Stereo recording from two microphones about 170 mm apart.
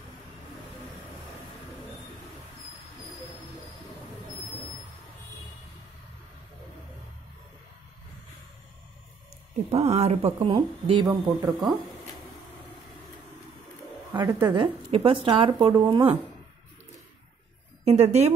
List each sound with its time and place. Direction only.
9.7 s speech: 35° right (ahead or behind)
14.4 s speech: 30° right (ahead or behind)
17.8 s speech: 35° right (ahead or behind)